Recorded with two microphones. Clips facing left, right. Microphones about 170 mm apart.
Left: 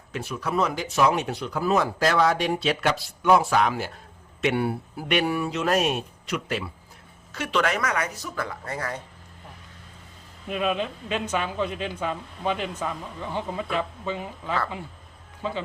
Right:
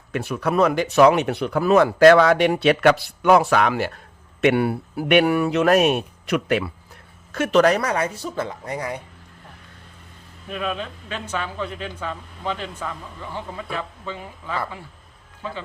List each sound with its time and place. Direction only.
0.1 s speech: 60° right (ahead or behind)
7.3 s speech: 45° right (ahead or behind); by 9.0 s 15° right (ahead or behind)
10.5 s speech: 15° left (ahead or behind)